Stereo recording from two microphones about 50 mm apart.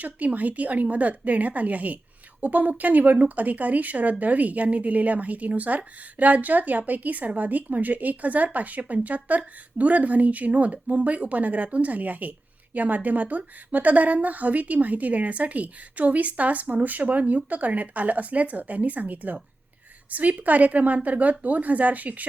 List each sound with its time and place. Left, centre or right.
0.0 s speech: right